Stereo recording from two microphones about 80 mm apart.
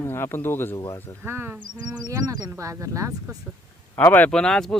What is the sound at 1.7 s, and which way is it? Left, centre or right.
Speech, right.